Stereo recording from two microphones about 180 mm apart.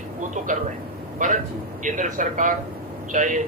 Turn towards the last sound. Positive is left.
turn(degrees=-45)  # may be behind; listen again after turning